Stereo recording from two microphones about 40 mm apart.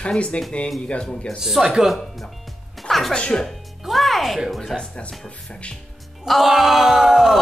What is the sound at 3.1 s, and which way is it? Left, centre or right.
Speech, left.